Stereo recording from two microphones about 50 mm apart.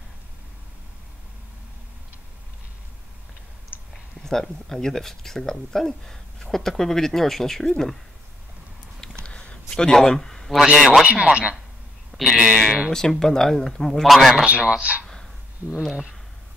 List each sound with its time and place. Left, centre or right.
3.9 s speech: centre
9.2 s a sound: left
9.7 s speech: centre
11.1 s speech: right
12.9 s speech: centre
14.4 s speech: right
15.9 s speech: centre